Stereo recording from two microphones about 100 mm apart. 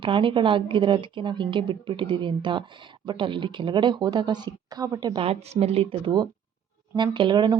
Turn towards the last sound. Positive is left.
turn(degrees=-50)  # may be behind; listen again after turning